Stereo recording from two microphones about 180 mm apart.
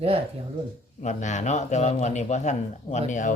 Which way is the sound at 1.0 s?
40° left (ahead or behind).